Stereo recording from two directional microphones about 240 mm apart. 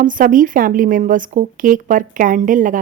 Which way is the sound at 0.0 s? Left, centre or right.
Right.